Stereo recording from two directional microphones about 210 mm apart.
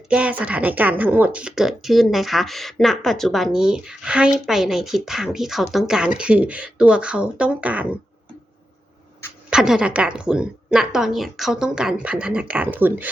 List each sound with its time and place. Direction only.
0.1 s speech: 5° right (ahead or behind)
9.5 s speech: 5° right (ahead or behind)